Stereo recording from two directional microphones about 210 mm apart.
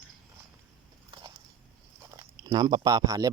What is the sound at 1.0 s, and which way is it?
Biting, 20° right (ahead or behind).